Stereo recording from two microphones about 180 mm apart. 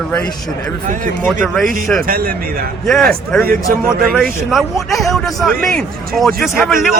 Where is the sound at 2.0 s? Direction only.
55° right (ahead or behind).